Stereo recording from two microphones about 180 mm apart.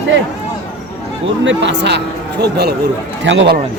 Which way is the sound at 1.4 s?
85° right.